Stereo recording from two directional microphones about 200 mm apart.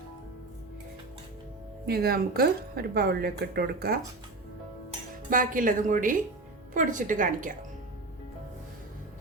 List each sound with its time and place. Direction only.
1.9 s a woman's voice: 50° right (ahead or behind)
5.3 s a woman's voice: 40° right (ahead or behind)